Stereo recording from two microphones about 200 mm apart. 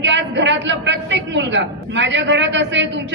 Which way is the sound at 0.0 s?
65° right (ahead or behind).